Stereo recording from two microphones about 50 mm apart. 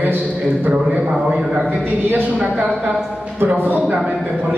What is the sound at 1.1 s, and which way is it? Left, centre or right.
Speech, centre.